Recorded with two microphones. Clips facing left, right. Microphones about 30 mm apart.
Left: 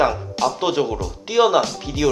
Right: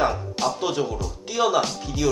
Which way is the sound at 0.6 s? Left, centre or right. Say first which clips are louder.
Left 5 dB; left.